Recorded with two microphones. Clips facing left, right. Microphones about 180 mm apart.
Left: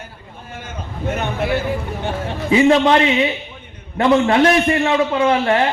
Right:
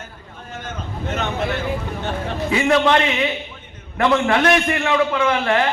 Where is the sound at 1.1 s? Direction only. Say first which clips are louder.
Left 1 dB; 10° left (ahead or behind).